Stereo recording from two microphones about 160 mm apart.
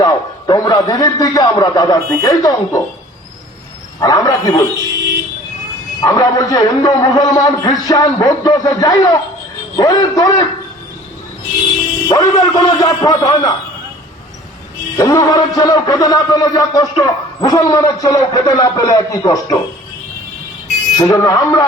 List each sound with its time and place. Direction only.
0.0 s a man's voice: 25° left (ahead or behind)
4.0 s a man's voice: 25° left (ahead or behind)
4.8 s speech: 20° right (ahead or behind)
6.0 s a man's voice: 25° left (ahead or behind)
12.0 s a man's voice: 25° left (ahead or behind)
14.9 s a man's voice: 25° left (ahead or behind)
21.0 s a man's voice: 20° left (ahead or behind)